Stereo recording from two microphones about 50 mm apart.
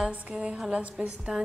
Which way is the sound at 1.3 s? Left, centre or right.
Centre.